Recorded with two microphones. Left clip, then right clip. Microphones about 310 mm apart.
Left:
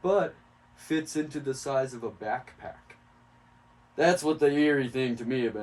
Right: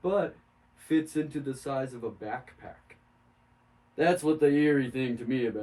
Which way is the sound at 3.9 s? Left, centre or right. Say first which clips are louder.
Left 1 dB; centre.